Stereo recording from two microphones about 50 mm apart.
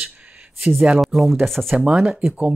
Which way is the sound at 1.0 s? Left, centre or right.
Centre.